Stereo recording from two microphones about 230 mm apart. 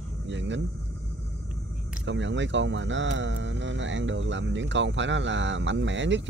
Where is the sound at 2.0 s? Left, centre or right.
Right.